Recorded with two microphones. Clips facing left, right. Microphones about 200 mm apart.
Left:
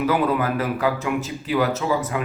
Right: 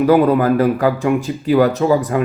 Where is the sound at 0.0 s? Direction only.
35° right (ahead or behind).